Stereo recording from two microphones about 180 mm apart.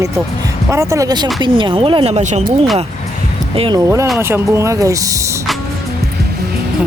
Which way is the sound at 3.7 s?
15° right (ahead or behind).